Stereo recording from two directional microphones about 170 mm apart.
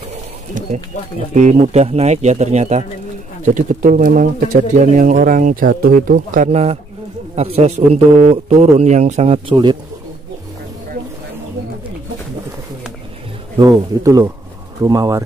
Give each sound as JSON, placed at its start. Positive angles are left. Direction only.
{"t": 0.6, "sound": "speech", "side_deg": -50}
{"t": 13.6, "sound": "speech", "side_deg": -20}